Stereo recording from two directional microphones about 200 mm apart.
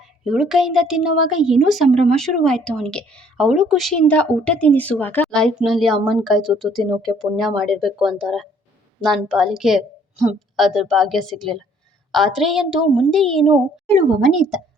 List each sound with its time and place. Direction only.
0.3 s a woman's voice: centre (ahead or behind)
1.9 s speech: 30° right (ahead or behind)
2.1 s a woman's voice: centre (ahead or behind)